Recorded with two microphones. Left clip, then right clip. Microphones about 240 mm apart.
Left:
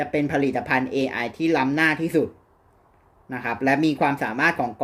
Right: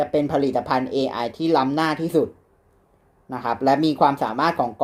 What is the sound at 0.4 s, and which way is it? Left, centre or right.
Speech, left.